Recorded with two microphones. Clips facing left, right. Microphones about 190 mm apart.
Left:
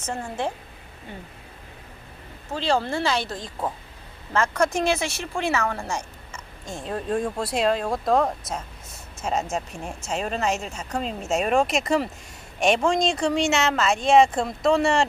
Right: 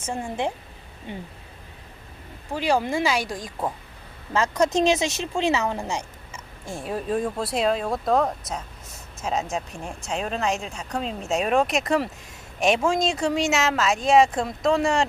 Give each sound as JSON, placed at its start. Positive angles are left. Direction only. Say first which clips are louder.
{"t": 0.0, "sound": "speech", "louder": "right 1 dB", "side_deg": -15}
{"t": 2.5, "sound": "speech", "louder": "right 1 dB", "side_deg": -15}
{"t": 6.7, "sound": "speech", "louder": "even", "side_deg": -5}